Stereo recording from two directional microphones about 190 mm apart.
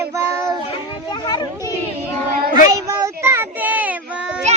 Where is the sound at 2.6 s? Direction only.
15° right (ahead or behind).